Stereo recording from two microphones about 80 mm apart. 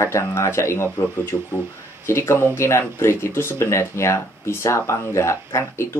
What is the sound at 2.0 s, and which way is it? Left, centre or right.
Speech, left.